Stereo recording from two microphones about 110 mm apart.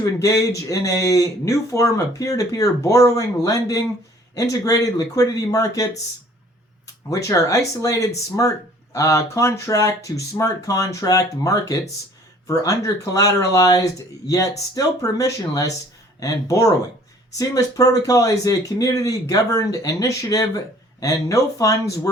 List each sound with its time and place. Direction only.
0.0 s speech: 30° left (ahead or behind)
7.1 s speech: 30° left (ahead or behind)